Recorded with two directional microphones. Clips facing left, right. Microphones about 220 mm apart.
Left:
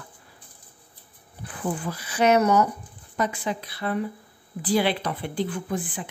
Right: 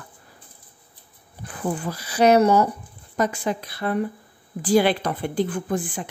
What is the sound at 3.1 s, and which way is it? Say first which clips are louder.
A woman's voice: right 3 dB; 45° right (ahead or behind).